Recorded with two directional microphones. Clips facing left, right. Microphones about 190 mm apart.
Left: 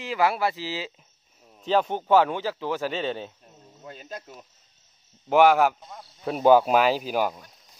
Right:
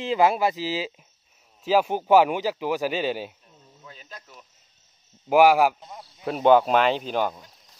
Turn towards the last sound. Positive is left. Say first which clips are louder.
# even
turn(degrees=5)  # may be behind; listen again after turning